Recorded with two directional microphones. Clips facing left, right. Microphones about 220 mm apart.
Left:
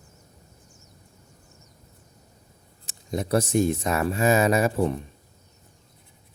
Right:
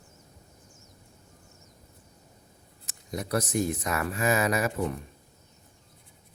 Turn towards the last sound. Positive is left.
turn(degrees=30)  # may be behind; listen again after turning